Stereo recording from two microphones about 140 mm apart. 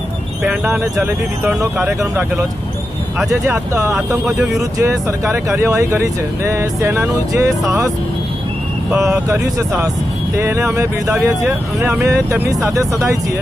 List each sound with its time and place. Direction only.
0.7 s speech: 15° right (ahead or behind)
4.7 s speech: 20° right (ahead or behind)
9.0 s speech: 20° right (ahead or behind)